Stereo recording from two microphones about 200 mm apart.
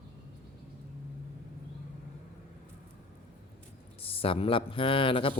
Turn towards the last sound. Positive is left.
turn(degrees=25)  # may be behind; listen again after turning